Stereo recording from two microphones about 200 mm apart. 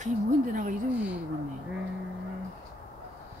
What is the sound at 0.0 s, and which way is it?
Speech, 40° right (ahead or behind).